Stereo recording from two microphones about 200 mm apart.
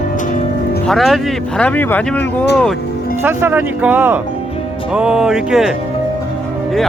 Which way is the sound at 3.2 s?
10° right (ahead or behind).